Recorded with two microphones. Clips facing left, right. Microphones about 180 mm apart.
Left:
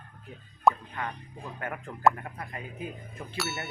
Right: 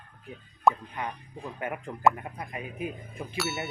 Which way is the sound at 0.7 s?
Centre (ahead or behind).